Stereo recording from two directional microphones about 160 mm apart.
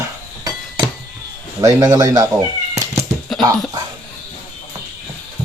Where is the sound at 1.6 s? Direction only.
20° right (ahead or behind).